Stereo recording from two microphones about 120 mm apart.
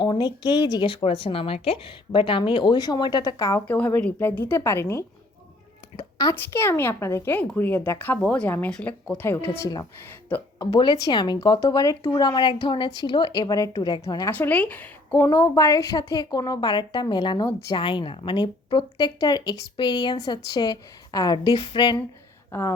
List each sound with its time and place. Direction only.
0.0 s a woman's voice: 35° left (ahead or behind)
3.7 s speech: 15° left (ahead or behind)
6.3 s speech: 20° left (ahead or behind)
10.6 s a woman's voice: 35° left (ahead or behind)
14.3 s speech: 15° left (ahead or behind)
15.4 s a woman's voice: 25° left (ahead or behind)
21.5 s a sound: 50° left (ahead or behind)
22.5 s speech: 20° left (ahead or behind)